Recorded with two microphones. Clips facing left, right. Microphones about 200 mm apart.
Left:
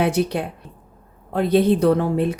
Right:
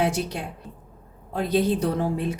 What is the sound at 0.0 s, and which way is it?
A woman's voice, 60° left (ahead or behind).